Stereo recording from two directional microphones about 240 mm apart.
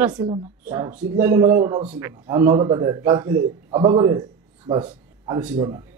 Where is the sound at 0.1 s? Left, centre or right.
Centre.